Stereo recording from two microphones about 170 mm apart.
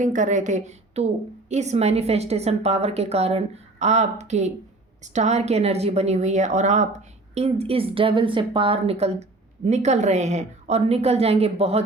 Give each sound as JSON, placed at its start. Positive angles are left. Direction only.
{"t": 0.0, "sound": "a woman's voice", "side_deg": -50}